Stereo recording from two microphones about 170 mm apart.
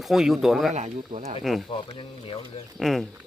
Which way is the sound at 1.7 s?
30° left (ahead or behind).